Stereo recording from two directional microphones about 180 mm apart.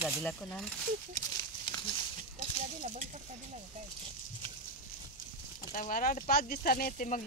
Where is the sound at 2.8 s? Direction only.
40° right (ahead or behind).